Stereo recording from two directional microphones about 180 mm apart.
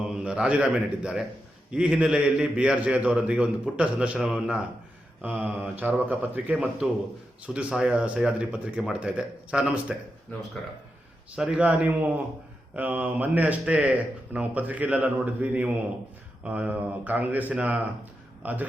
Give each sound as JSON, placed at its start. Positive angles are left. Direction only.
{"t": 0.2, "sound": "a man's voice", "side_deg": -5}
{"t": 11.3, "sound": "a man's voice", "side_deg": -5}